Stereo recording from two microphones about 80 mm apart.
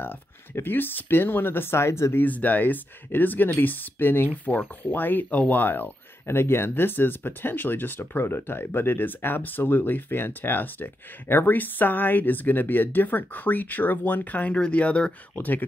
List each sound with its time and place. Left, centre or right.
0.0 s speech: left
2.2 s speech: left